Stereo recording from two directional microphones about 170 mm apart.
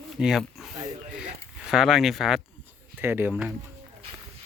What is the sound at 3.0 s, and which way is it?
Speech, 10° right (ahead or behind).